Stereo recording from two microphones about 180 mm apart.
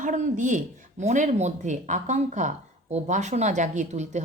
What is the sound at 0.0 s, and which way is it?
Speech, 45° right (ahead or behind).